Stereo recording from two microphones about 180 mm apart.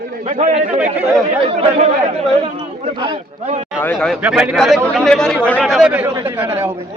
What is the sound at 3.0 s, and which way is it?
Speech, 35° right (ahead or behind).